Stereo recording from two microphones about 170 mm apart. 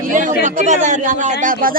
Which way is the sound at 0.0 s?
50° right (ahead or behind).